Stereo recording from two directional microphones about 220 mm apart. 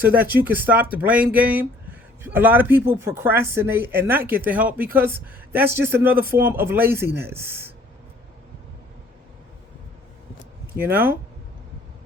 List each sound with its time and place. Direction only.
0.2 s speech: 10° right (ahead or behind)
10.8 s speech: 10° right (ahead or behind)